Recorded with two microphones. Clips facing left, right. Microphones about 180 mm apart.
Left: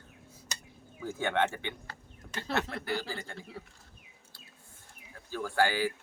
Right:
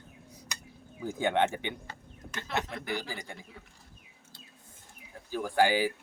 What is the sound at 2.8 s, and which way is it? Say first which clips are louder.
Speech: left 1 dB; 15° right (ahead or behind).